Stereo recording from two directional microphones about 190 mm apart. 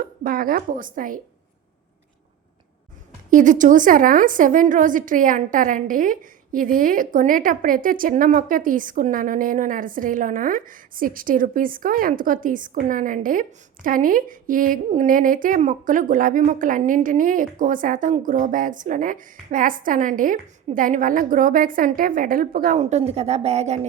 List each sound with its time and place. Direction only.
0.0 s a woman's voice: 50° right (ahead or behind)
3.2 s a woman's voice: 45° right (ahead or behind)